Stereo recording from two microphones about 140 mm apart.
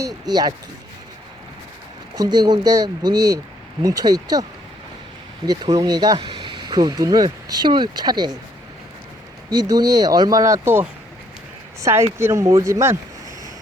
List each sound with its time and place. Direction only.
0.3 s speech: 30° right (ahead or behind)
2.1 s speech: 25° right (ahead or behind)
5.5 s speech: 25° right (ahead or behind)
9.5 s speech: 30° right (ahead or behind)